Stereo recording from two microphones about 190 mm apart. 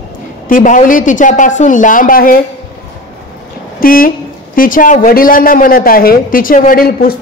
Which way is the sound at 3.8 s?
50° left (ahead or behind).